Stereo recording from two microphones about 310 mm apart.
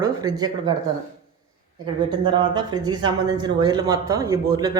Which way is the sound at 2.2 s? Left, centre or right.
Centre.